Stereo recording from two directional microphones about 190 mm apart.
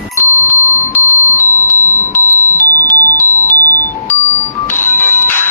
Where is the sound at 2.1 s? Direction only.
10° left (ahead or behind).